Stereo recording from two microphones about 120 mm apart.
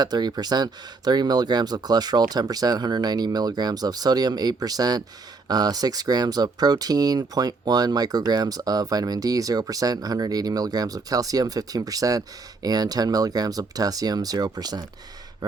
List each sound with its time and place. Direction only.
0.0 s speech: 35° right (ahead or behind)